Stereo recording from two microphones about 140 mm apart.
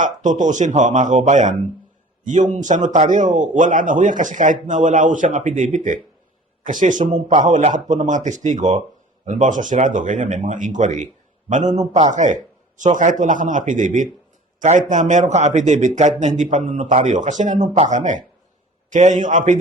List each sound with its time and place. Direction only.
0.0 s a man's voice: 65° right (ahead or behind)